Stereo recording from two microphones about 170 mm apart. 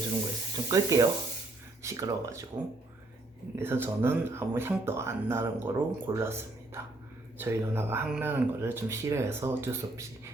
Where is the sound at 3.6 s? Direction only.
15° right (ahead or behind).